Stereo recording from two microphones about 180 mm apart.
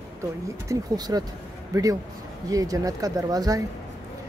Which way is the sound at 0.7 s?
20° right (ahead or behind).